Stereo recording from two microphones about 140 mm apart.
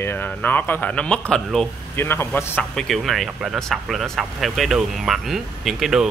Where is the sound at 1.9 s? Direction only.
15° left (ahead or behind).